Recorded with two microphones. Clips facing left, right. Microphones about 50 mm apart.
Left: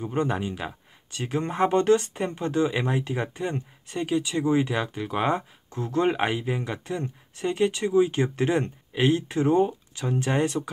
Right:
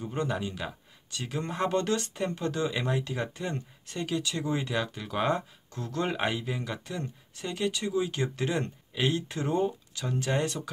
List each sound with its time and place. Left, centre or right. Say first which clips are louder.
0.0 s speech: left 5 dB; left